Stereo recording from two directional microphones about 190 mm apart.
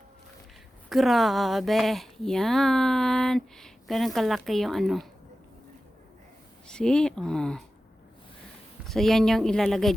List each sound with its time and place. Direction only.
0.9 s speech: centre (ahead or behind)
6.7 s speech: 5° left (ahead or behind)
8.9 s speech: centre (ahead or behind)